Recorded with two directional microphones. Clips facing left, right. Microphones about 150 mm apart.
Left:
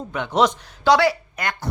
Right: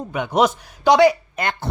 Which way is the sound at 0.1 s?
10° right (ahead or behind).